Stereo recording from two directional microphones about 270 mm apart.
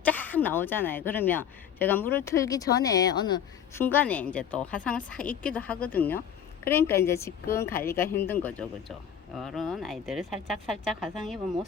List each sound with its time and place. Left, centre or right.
0.0 s a woman's voice: centre